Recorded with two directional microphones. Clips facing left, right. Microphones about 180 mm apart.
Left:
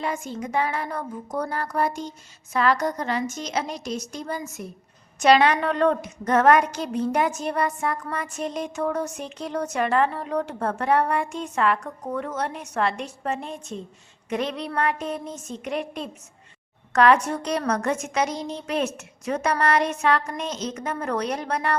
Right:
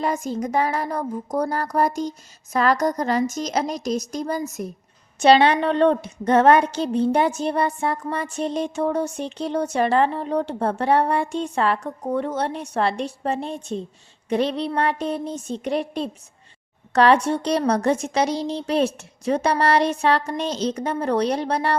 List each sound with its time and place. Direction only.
0.0 s speech: 40° right (ahead or behind)
5.2 s a woman's voice: 30° right (ahead or behind)